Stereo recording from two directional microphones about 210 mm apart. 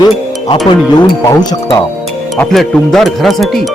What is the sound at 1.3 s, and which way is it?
Speech, 20° left (ahead or behind).